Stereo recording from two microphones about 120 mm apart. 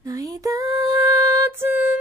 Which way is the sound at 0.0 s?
30° right (ahead or behind).